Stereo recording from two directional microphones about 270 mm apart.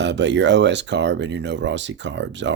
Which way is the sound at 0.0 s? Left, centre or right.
Right.